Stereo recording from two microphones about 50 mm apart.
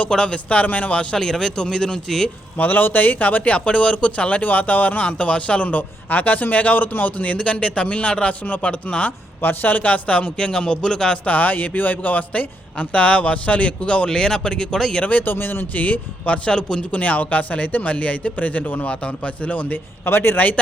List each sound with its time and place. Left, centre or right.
0.0 s speech: centre
1.1 s speech: centre
2.6 s speech: left
9.4 s speech: left; by 11.2 s centre
11.3 s speech: left; by 15.0 s centre
15.0 s speech: left
16.5 s speech: centre
17.0 s speech: left
20.1 s speech: left